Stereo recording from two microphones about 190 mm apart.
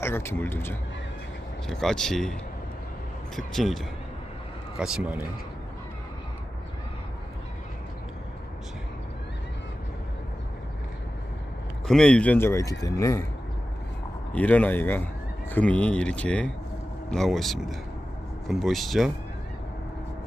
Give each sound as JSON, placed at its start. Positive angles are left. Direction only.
{"t": 0.0, "sound": "speech", "side_deg": 10}
{"t": 3.3, "sound": "speech", "side_deg": 0}
{"t": 11.9, "sound": "speech", "side_deg": 5}
{"t": 14.3, "sound": "speech", "side_deg": 10}